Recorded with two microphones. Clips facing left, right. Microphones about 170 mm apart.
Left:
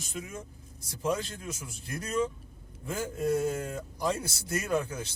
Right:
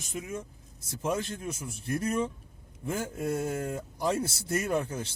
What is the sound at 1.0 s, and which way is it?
Speech, 20° right (ahead or behind).